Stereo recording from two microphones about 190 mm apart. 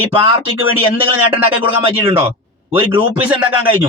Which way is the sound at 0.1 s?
30° right (ahead or behind).